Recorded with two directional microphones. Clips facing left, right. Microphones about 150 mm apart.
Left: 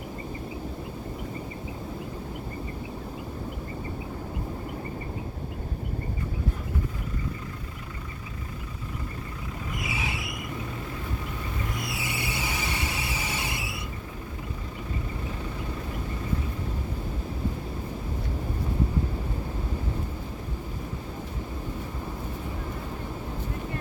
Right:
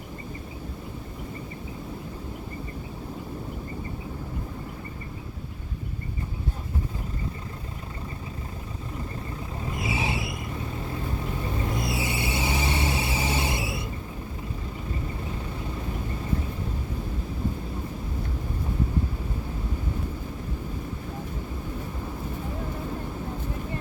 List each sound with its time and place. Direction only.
9.7 s vehicle: 30° right (ahead or behind)
11.6 s vehicle: 30° right (ahead or behind)